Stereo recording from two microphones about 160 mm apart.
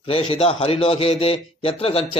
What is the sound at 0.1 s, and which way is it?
A man's voice, 35° left (ahead or behind).